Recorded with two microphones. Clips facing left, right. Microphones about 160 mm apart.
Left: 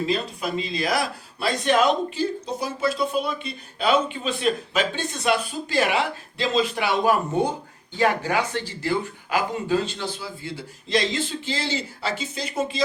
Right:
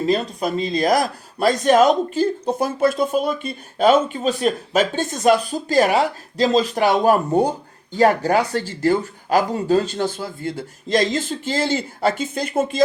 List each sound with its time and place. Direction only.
0.0 s a man's voice: 45° right (ahead or behind)